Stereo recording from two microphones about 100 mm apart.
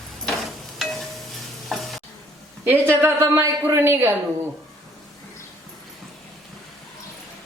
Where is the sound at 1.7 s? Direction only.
Centre (ahead or behind).